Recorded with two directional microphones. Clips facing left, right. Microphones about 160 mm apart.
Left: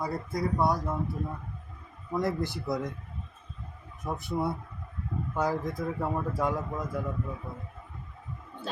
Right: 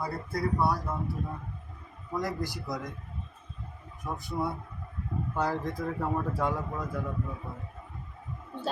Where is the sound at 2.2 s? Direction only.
25° left (ahead or behind).